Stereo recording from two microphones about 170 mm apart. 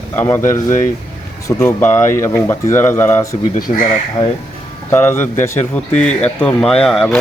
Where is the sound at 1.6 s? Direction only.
15° left (ahead or behind).